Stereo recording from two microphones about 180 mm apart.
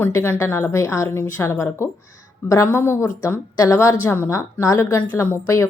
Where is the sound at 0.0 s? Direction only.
10° left (ahead or behind).